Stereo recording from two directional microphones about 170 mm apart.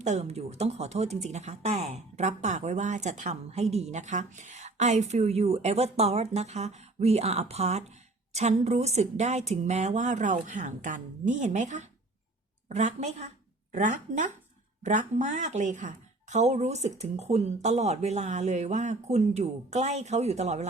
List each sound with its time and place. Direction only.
0.0 s speech: 40° right (ahead or behind)